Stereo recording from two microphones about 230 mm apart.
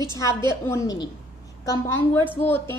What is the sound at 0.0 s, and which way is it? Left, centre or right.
Speech, centre.